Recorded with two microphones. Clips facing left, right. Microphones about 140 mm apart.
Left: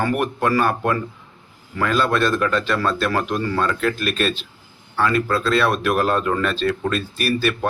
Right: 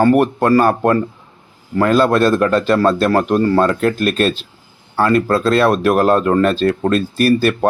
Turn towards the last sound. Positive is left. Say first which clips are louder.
# right 7 dB
turn(degrees=-40)  # may be behind; listen again after turning